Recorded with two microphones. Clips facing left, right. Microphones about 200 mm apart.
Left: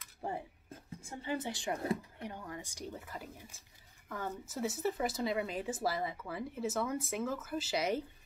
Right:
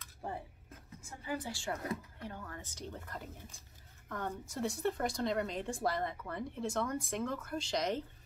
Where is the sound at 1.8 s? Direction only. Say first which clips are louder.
Left 4 dB; 30° left (ahead or behind).